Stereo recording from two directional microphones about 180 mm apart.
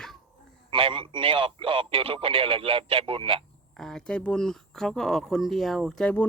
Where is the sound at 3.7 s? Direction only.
5° left (ahead or behind).